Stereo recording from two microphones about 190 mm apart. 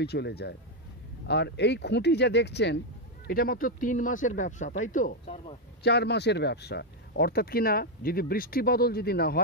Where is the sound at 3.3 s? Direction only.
50° left (ahead or behind); by 5.6 s 35° left (ahead or behind).